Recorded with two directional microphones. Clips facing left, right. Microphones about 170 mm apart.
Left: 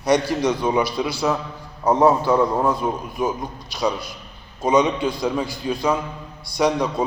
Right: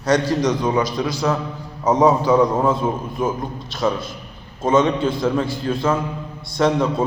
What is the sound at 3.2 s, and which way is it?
Speech, 15° left (ahead or behind).